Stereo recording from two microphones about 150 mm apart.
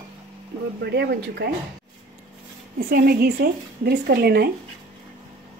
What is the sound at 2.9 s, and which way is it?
Speech, 90° right.